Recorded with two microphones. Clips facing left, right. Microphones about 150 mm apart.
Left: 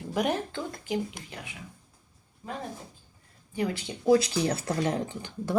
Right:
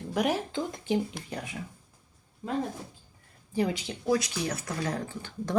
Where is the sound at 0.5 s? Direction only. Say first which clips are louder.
Right 3 dB; 20° right (ahead or behind).